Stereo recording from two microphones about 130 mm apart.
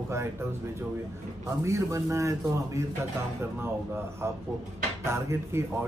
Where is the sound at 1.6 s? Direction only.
25° right (ahead or behind).